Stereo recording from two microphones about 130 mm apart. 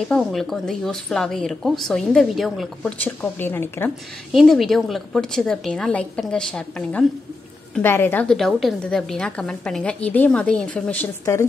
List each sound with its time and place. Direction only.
0.1 s a woman's voice: centre (ahead or behind)
3.0 s a woman's voice: 15° left (ahead or behind)
4.3 s a woman's voice: centre (ahead or behind)
7.8 s a woman's voice: 15° left (ahead or behind)
8.3 s a woman's voice: centre (ahead or behind)
11.3 s speech: 25° left (ahead or behind)